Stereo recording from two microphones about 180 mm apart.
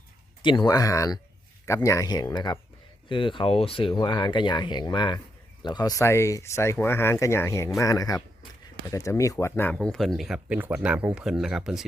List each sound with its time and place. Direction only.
0.4 s speech: 25° left (ahead or behind)
9.7 s speech: centre (ahead or behind)